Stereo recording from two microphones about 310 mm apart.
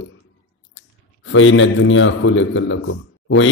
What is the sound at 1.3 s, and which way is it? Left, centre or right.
A man's voice, left.